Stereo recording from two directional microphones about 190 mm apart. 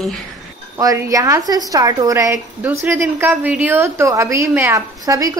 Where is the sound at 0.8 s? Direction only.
20° right (ahead or behind).